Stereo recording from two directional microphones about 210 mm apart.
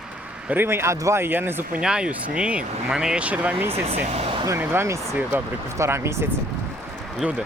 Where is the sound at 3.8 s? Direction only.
30° right (ahead or behind).